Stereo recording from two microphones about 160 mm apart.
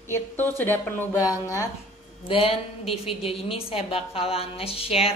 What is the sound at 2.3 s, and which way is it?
A woman's voice, 35° left (ahead or behind).